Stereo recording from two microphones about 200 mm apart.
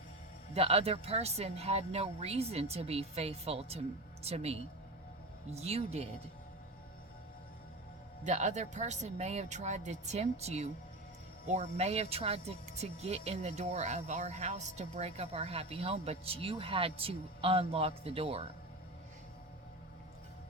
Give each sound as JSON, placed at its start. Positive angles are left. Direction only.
{"t": 0.5, "sound": "speech", "side_deg": -30}
{"t": 8.2, "sound": "speech", "side_deg": -35}